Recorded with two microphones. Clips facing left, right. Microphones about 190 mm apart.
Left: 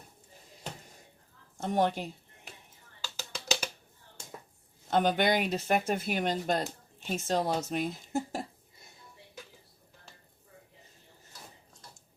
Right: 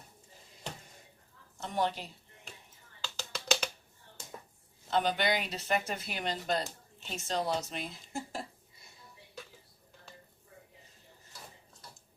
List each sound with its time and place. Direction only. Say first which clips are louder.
1.5 s speech: left 5 dB; 50° left (ahead or behind)
3.0 s percussion: even; 5° left (ahead or behind)
4.9 s speech: left 4 dB; 50° left (ahead or behind)